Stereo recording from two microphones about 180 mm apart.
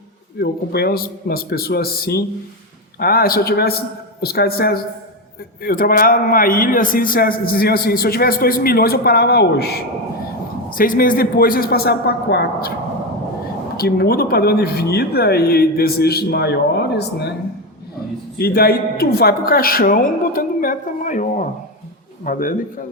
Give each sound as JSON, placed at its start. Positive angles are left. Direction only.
{"t": 0.3, "sound": "a man's voice", "side_deg": 60}
{"t": 10.7, "sound": "a man's voice", "side_deg": 50}
{"t": 13.7, "sound": "a man's voice", "side_deg": 60}
{"t": 18.3, "sound": "a man's voice", "side_deg": 60}